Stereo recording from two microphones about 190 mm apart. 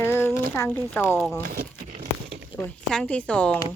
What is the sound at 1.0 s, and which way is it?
Speech, 5° left (ahead or behind).